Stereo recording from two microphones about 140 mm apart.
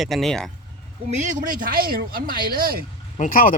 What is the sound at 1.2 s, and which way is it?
Speech, 75° right (ahead or behind).